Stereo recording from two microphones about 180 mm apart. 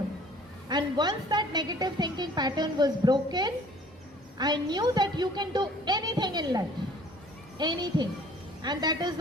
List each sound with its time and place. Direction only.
0.7 s a woman's voice: 25° right (ahead or behind)
7.6 s a woman's voice: 25° right (ahead or behind)